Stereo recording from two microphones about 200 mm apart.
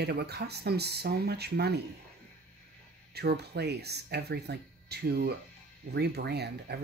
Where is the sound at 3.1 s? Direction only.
55° right (ahead or behind).